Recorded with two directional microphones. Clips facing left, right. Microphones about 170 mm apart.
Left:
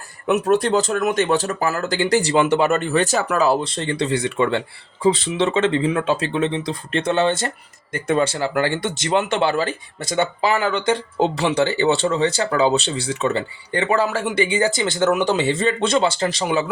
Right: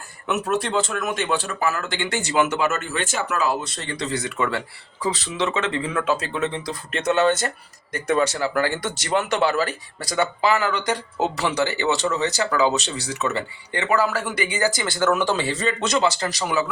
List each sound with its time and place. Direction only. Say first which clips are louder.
0.3 s speech: left 6 dB; 35° left (ahead or behind)